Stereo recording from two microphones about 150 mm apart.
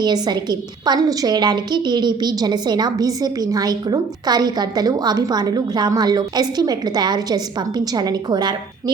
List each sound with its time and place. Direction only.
0.0 s a woman's voice: 30° right (ahead or behind)